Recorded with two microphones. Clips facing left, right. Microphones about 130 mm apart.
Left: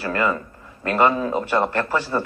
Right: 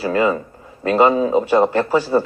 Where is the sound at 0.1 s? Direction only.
15° right (ahead or behind).